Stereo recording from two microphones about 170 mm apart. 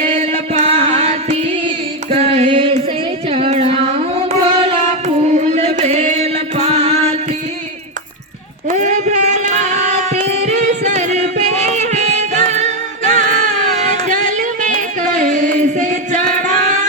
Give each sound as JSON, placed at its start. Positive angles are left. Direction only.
{"t": 0.0, "sound": "music", "side_deg": -40}
{"t": 3.2, "sound": "carnatic music", "side_deg": -35}
{"t": 8.7, "sound": "a sound", "side_deg": -45}